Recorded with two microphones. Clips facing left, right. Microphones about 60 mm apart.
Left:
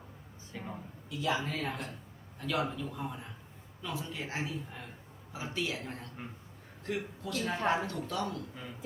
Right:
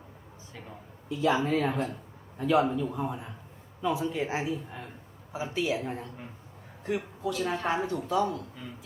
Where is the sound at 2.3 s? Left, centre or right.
Right.